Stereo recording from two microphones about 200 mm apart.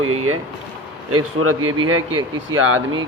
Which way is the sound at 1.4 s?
90° right.